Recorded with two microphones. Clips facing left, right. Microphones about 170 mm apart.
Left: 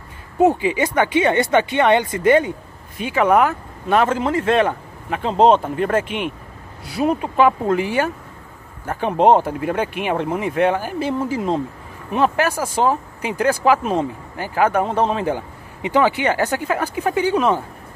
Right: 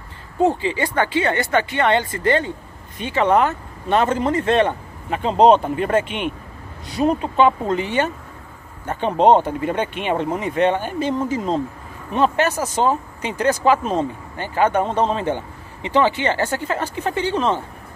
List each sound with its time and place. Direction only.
0.4 s speech: 15° left (ahead or behind)